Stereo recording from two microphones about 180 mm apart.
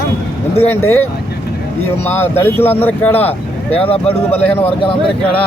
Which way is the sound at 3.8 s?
30° left (ahead or behind).